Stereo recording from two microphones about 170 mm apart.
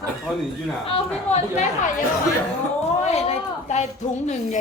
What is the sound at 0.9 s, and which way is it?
Speech, 40° left (ahead or behind).